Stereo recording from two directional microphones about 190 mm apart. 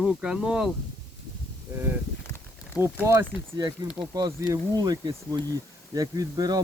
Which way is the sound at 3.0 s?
15° right (ahead or behind).